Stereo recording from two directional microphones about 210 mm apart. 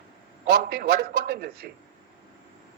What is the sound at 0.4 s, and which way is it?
A man's voice, 45° right (ahead or behind).